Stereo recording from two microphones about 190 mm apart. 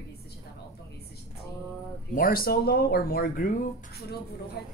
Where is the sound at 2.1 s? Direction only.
50° left (ahead or behind).